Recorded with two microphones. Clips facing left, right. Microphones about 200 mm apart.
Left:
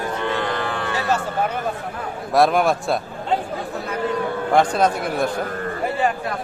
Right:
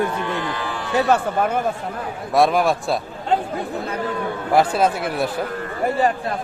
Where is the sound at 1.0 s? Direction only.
55° right (ahead or behind).